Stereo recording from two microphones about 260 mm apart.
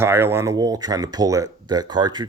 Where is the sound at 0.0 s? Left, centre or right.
Centre.